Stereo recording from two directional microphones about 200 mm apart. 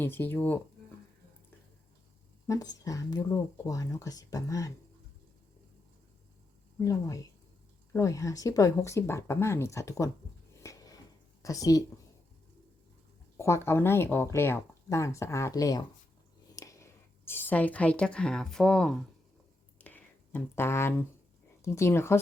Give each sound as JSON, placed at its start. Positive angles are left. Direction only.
{"t": 0.0, "sound": "speech", "side_deg": 10}
{"t": 2.5, "sound": "speech", "side_deg": 15}
{"t": 6.7, "sound": "speech", "side_deg": 15}
{"t": 10.6, "sound": "a sound", "side_deg": 15}
{"t": 11.4, "sound": "speech", "side_deg": 15}
{"t": 13.3, "sound": "a woman's voice", "side_deg": 15}
{"t": 19.8, "sound": "a sound", "side_deg": 10}
{"t": 21.6, "sound": "speech", "side_deg": 15}